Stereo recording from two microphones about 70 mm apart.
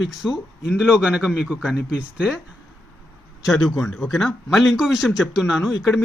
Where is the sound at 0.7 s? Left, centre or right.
Centre.